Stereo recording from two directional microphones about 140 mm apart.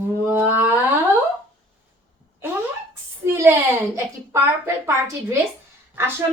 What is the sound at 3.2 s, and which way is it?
Speech, 20° right (ahead or behind).